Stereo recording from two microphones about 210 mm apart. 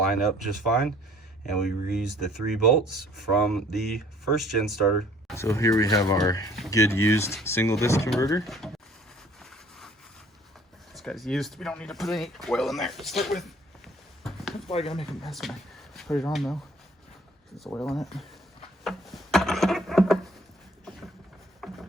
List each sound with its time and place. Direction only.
0.1 s speech: centre (ahead or behind)
2.0 s speech: centre (ahead or behind)
5.3 s speech: 15° left (ahead or behind)
8.4 s speech: centre (ahead or behind)
9.4 s a sound: centre (ahead or behind)
10.9 s speech: centre (ahead or behind)
13.8 s a sound: centre (ahead or behind)
14.7 s speech: 30° left (ahead or behind)
15.2 s speech: centre (ahead or behind)
17.7 s speech: centre (ahead or behind)
18.9 s a sound: centre (ahead or behind)
21.6 s a sound: centre (ahead or behind)